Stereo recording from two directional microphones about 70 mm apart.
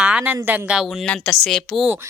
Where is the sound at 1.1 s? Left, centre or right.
Centre.